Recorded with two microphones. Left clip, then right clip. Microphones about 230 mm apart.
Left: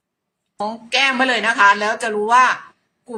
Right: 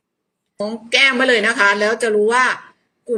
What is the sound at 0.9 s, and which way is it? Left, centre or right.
Speech, left.